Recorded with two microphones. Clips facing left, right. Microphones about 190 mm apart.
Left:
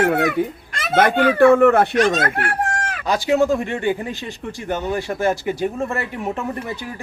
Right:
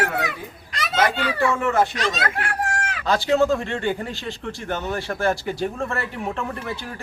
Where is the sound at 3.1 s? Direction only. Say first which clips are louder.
Left 2 dB; 15° left (ahead or behind).